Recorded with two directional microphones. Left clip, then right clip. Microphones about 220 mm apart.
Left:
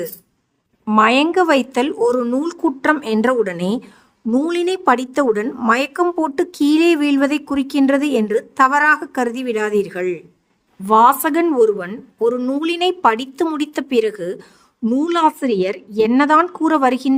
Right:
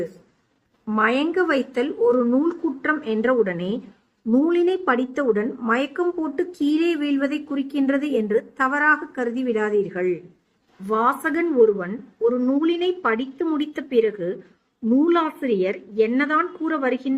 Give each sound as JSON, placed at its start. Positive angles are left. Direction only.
{"t": 0.9, "sound": "a woman's voice", "side_deg": 50}